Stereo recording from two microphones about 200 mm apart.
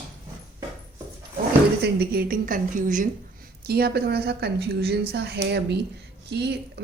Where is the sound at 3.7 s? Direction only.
50° right (ahead or behind).